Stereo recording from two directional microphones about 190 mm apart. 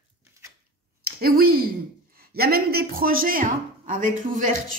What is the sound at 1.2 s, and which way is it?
A woman's voice, 50° right (ahead or behind).